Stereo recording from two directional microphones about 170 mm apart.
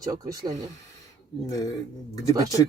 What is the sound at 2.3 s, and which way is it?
Speech, 20° right (ahead or behind).